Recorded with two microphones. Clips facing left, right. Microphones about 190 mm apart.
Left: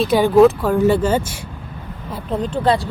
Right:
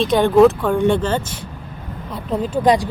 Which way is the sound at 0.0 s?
5° left (ahead or behind).